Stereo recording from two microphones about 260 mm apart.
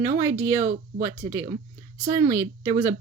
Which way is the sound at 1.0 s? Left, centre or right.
Centre.